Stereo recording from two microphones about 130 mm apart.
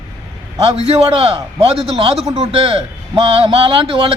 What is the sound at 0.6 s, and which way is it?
A man's voice, 50° right (ahead or behind).